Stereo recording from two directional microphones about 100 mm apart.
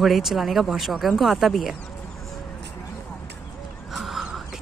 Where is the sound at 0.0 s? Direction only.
Centre (ahead or behind).